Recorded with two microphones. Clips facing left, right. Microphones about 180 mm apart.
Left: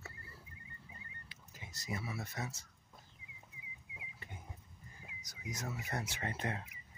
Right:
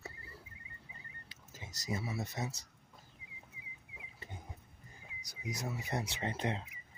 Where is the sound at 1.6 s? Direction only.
25° right (ahead or behind).